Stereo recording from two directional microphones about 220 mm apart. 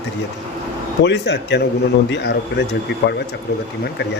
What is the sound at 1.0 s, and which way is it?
Speech, 50° left (ahead or behind).